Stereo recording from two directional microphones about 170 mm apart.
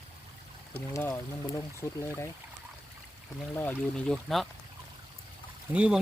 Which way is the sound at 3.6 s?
5° left (ahead or behind).